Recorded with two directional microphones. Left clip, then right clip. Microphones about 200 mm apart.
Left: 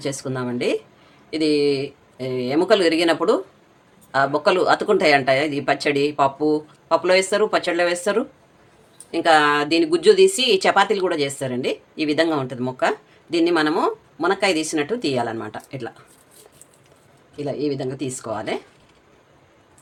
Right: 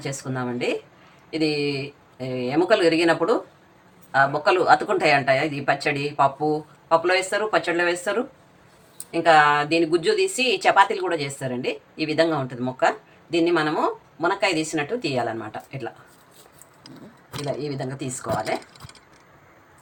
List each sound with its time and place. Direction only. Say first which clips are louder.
0.0 s speech: left 3 dB; 45° left (ahead or behind)
2.1 s speech: left 2 dB; 45° left (ahead or behind)
17.4 s speech: left 4 dB; 40° left (ahead or behind)